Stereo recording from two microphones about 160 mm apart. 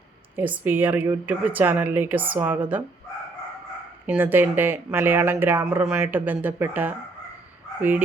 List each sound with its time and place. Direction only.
0.3 s speech: 10° right (ahead or behind)
4.0 s speech: 10° right (ahead or behind)